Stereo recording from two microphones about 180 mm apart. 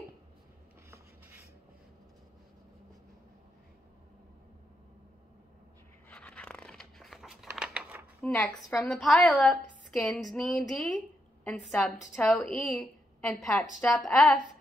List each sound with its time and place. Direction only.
0.8 s writing: 15° right (ahead or behind)
6.0 s a sound: 5° left (ahead or behind)
8.2 s a woman's voice: 5° left (ahead or behind)